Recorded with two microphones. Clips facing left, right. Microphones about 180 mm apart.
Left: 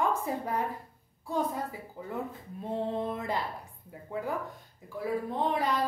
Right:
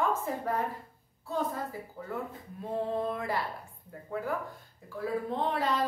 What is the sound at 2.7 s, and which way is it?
Speech, 20° left (ahead or behind).